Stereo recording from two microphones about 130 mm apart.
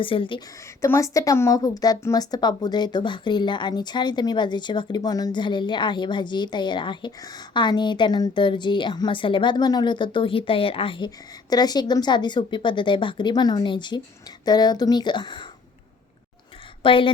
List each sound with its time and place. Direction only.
0.0 s speech: 40° left (ahead or behind)
0.8 s a woman's voice: 25° left (ahead or behind)
16.8 s a woman's voice: 40° left (ahead or behind)